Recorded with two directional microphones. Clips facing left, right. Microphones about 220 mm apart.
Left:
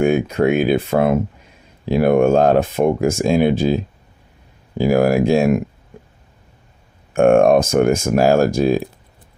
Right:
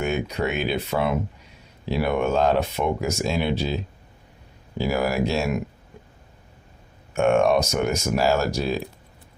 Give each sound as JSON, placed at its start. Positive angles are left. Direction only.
{"t": 0.0, "sound": "speech", "side_deg": 50}
{"t": 4.8, "sound": "speech", "side_deg": 50}
{"t": 7.1, "sound": "speech", "side_deg": 50}